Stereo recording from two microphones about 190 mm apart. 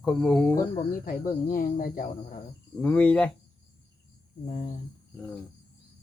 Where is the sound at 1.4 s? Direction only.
45° left (ahead or behind).